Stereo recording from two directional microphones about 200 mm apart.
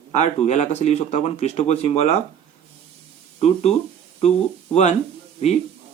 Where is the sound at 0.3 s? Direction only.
35° left (ahead or behind).